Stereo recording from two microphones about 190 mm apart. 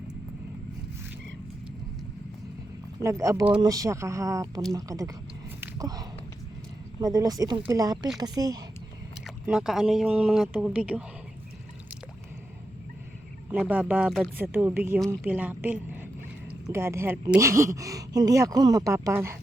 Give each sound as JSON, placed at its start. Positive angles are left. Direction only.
{"t": 3.0, "sound": "speech", "side_deg": -15}
{"t": 5.5, "sound": "a sound", "side_deg": -20}
{"t": 7.0, "sound": "speech", "side_deg": -20}
{"t": 9.2, "sound": "speech", "side_deg": 0}
{"t": 13.5, "sound": "speech", "side_deg": -5}